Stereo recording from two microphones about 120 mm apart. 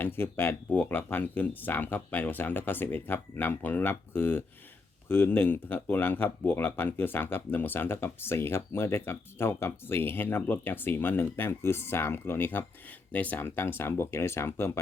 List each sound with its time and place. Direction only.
0.0 s speech: 20° left (ahead or behind)